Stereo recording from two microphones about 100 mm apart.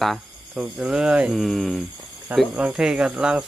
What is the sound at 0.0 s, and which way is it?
Cricket, centre (ahead or behind).